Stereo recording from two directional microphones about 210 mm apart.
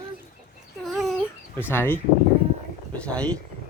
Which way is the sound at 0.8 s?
Centre (ahead or behind).